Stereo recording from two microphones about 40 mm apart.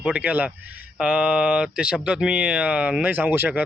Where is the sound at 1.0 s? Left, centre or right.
Right.